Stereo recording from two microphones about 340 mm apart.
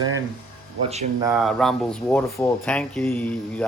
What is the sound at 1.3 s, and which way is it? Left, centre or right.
Speech, centre.